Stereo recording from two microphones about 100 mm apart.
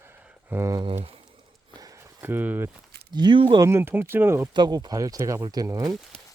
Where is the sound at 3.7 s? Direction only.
25° right (ahead or behind).